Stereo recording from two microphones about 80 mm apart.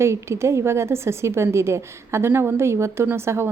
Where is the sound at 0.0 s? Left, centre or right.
Right.